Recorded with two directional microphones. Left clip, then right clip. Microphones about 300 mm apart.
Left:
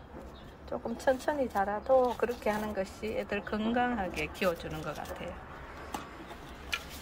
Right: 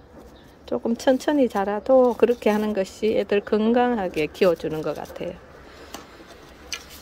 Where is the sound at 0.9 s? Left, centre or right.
Right.